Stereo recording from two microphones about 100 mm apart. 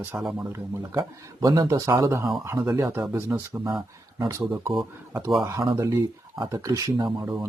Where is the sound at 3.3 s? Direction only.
15° right (ahead or behind).